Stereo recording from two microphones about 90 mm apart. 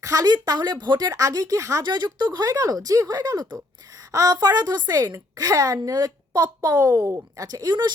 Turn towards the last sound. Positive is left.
turn(degrees=-55)  # may be behind; listen again after turning